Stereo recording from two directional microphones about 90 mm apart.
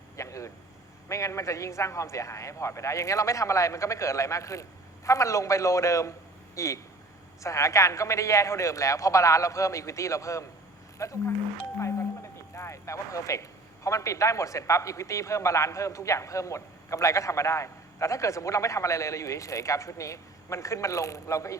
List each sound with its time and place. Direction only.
0.2 s vehicle: 35° left (ahead or behind)
1.0 s speech: 35° left (ahead or behind)
11.8 s doorbell: 30° left (ahead or behind)
12.5 s speech: 30° left (ahead or behind)